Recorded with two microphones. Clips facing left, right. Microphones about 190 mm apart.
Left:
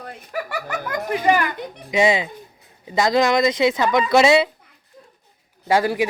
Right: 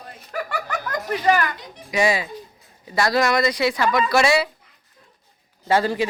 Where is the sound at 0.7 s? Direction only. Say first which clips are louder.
Left 4 dB; 15° left (ahead or behind).